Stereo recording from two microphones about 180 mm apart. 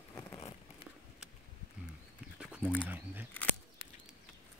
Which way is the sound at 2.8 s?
10° right (ahead or behind).